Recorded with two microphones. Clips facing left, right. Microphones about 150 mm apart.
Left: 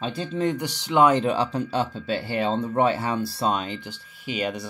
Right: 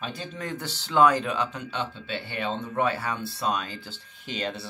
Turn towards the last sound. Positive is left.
turn(degrees=10)  # may be behind; listen again after turning